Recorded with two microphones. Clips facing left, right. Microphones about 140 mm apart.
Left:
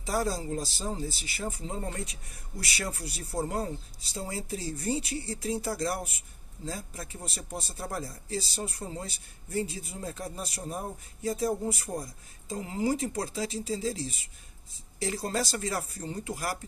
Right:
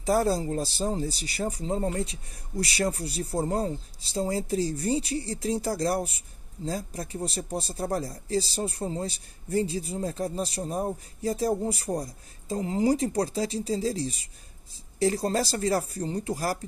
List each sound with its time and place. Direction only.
0.0 s speech: 45° right (ahead or behind)